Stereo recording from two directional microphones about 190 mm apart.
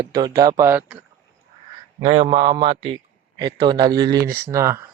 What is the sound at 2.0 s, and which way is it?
A man's voice, 30° right (ahead or behind).